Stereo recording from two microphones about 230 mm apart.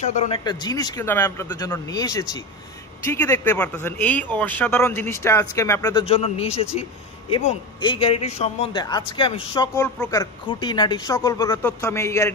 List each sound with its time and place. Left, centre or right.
0.0 s a man's voice: left
0.4 s speech: centre
6.0 s a man's voice: left